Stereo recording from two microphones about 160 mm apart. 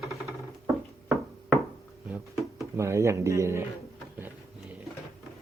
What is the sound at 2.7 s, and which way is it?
Speech, 15° right (ahead or behind).